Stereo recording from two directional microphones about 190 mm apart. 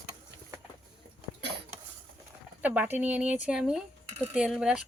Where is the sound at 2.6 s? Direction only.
10° right (ahead or behind).